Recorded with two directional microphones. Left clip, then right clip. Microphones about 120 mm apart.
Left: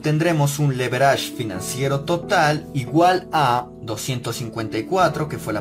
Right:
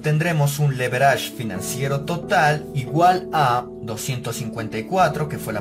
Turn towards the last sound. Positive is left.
turn(degrees=30)  # may be behind; listen again after turning